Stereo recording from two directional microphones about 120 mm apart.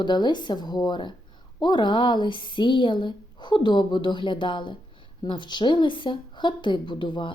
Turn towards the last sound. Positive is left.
turn(degrees=40)  # may be behind; listen again after turning